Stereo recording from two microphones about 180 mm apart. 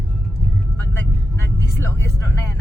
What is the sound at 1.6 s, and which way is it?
Music, 15° left (ahead or behind).